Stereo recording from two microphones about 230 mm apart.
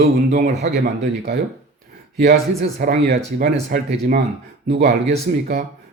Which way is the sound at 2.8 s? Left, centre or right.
Right.